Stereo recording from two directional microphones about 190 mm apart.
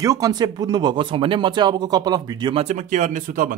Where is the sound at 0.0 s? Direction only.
20° right (ahead or behind).